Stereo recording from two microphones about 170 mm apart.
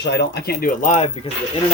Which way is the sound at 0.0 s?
80° left.